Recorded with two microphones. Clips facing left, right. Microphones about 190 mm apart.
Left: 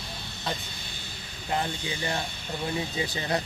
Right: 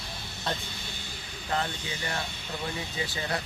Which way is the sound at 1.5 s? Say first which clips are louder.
Left 2 dB; 20° left (ahead or behind).